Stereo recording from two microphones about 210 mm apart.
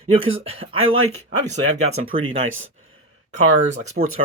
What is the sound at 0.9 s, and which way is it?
Speech, 85° right.